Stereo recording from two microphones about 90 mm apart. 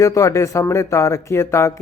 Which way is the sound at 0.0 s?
35° left (ahead or behind).